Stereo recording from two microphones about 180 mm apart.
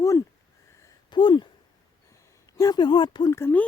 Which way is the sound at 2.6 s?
25° left (ahead or behind).